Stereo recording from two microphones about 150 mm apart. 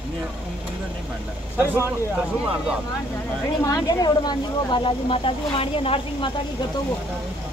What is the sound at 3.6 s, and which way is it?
Speech, 25° left (ahead or behind).